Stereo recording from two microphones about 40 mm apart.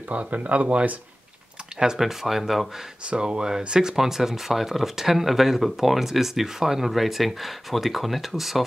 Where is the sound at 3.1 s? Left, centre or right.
Right.